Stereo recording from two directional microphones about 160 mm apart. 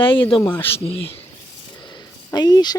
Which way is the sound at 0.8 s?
35° left (ahead or behind).